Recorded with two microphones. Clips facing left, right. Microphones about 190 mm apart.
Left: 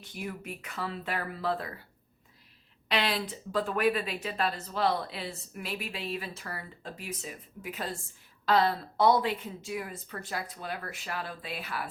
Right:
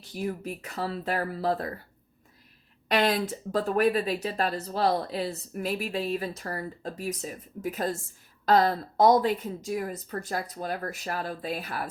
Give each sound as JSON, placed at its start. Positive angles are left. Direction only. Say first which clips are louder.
{"t": 0.0, "sound": "speech", "louder": "right 7 dB", "side_deg": -35}
{"t": 2.9, "sound": "speech", "louder": "right 6 dB", "side_deg": -45}